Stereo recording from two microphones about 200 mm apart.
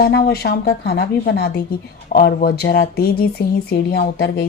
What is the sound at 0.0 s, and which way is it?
Speech, 50° left (ahead or behind).